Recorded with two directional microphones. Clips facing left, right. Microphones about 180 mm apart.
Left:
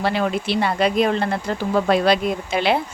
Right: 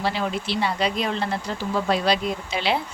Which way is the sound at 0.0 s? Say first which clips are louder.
Left 4 dB; 55° left (ahead or behind).